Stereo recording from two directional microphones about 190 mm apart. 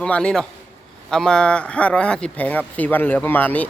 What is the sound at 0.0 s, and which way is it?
A man's voice, 5° left (ahead or behind).